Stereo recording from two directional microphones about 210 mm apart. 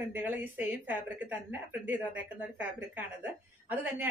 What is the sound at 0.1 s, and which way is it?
A woman's voice, 10° right (ahead or behind).